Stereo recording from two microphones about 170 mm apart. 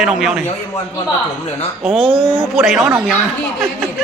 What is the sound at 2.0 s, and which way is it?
Speech, 30° right (ahead or behind).